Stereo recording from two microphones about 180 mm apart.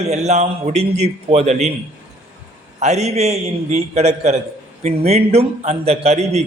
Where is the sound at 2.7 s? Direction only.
40° right (ahead or behind).